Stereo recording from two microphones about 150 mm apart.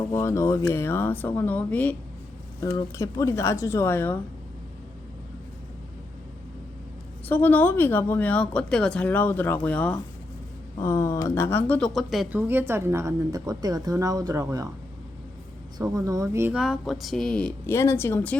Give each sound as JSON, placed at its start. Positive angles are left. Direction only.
{"t": 0.1, "sound": "speech", "side_deg": 20}
{"t": 2.6, "sound": "speech", "side_deg": 20}
{"t": 7.3, "sound": "speech", "side_deg": 15}
{"t": 11.9, "sound": "speech", "side_deg": 0}
{"t": 12.4, "sound": "a woman's voice", "side_deg": -15}
{"t": 16.0, "sound": "a woman's voice", "side_deg": -25}
{"t": 16.5, "sound": "speech", "side_deg": -5}
{"t": 17.7, "sound": "speech", "side_deg": 15}